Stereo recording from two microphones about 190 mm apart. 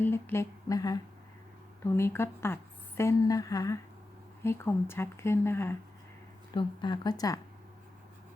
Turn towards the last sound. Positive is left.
turn(degrees=20)  # may be behind; listen again after turning